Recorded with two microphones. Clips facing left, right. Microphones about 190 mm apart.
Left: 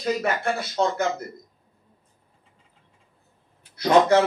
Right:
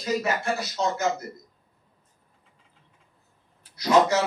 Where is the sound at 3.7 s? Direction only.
55° left (ahead or behind).